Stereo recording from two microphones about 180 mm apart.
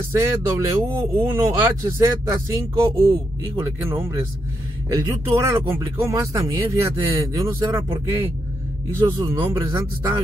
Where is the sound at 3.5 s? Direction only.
15° right (ahead or behind).